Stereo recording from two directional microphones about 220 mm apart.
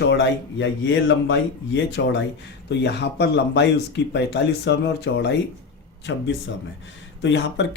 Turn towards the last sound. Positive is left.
turn(degrees=55)  # may be behind; listen again after turning